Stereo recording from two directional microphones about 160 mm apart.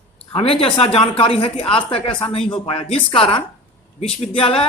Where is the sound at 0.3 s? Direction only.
35° left (ahead or behind).